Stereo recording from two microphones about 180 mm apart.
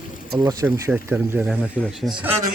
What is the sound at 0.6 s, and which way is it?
Speech, 10° right (ahead or behind).